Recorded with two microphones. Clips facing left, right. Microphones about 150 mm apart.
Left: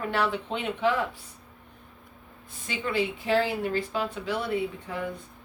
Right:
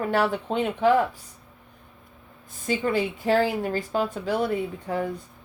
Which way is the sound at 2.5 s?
45° right (ahead or behind).